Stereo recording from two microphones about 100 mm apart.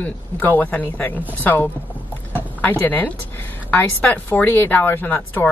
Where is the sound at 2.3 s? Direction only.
15° left (ahead or behind).